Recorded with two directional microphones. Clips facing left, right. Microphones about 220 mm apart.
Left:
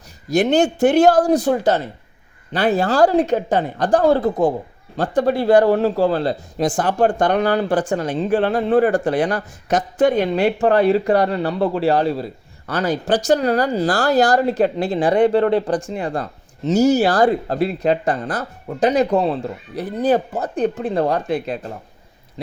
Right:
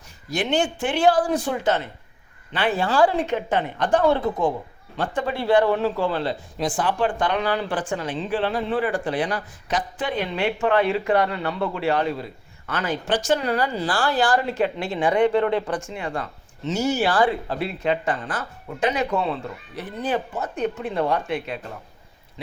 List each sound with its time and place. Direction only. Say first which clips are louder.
0.3 s speech: left 7 dB; 40° left (ahead or behind)